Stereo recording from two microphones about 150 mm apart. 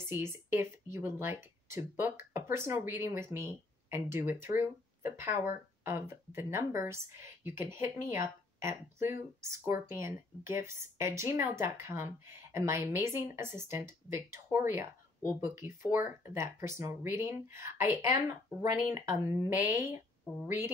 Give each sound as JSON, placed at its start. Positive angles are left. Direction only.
{"t": 0.0, "sound": "speech", "side_deg": -15}